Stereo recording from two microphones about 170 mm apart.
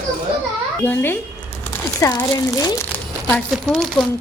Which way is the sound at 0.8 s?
10° left (ahead or behind).